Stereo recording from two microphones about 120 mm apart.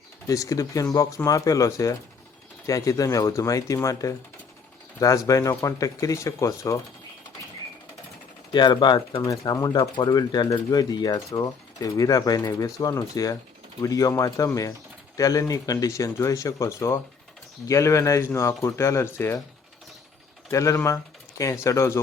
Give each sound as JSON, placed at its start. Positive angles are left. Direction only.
{"t": 0.3, "sound": "speech", "side_deg": 25}
{"t": 8.5, "sound": "speech", "side_deg": 40}
{"t": 20.5, "sound": "speech", "side_deg": 25}